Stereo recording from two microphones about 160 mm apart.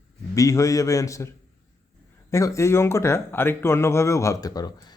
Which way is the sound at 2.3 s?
20° left (ahead or behind).